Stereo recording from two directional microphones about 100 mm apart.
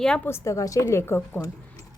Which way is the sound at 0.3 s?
25° left (ahead or behind).